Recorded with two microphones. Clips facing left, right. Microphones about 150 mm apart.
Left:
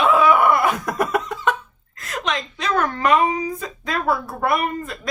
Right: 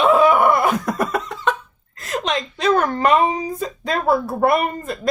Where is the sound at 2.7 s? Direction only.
30° right (ahead or behind).